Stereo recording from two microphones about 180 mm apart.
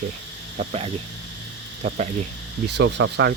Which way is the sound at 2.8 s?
75° right (ahead or behind).